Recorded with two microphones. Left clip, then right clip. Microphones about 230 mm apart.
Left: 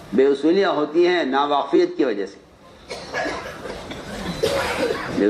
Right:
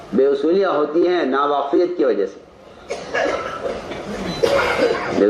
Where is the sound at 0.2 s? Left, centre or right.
Left.